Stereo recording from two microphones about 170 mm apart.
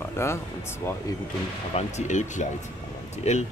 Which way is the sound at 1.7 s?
40° left (ahead or behind).